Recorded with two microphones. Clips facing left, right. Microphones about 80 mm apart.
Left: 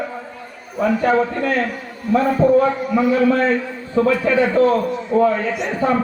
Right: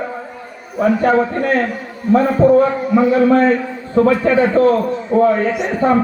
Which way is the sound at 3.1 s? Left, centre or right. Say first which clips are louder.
Right 3 dB; right.